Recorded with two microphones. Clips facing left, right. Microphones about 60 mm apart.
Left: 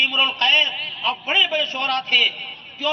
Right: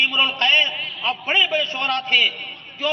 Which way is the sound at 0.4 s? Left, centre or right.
Right.